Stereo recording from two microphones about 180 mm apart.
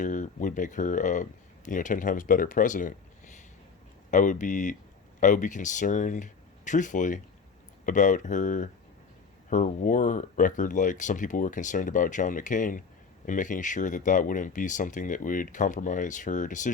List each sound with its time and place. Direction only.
0.0 s speech: 45° left (ahead or behind)
4.1 s speech: 45° left (ahead or behind)